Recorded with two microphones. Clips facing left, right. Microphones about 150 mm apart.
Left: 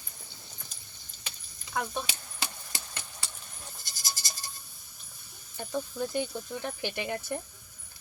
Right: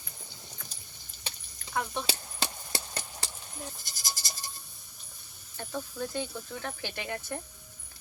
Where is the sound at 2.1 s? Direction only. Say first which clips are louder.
Right 4 dB; 30° right (ahead or behind).